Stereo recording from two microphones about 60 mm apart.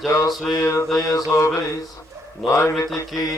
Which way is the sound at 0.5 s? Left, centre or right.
Left.